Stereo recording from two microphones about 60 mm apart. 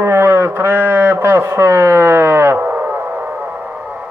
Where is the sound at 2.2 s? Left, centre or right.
Right.